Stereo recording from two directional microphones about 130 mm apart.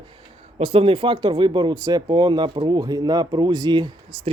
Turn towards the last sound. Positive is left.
turn(degrees=-35)  # may be behind; listen again after turning